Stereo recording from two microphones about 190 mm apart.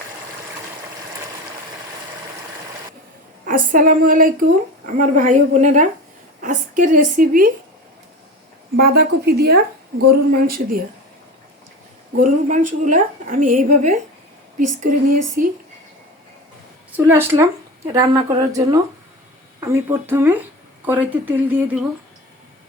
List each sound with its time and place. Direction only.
3.4 s a woman's voice: 45° right (ahead or behind)
8.8 s a woman's voice: 55° right (ahead or behind)
12.1 s a woman's voice: 40° right (ahead or behind)
17.0 s speech: 10° right (ahead or behind)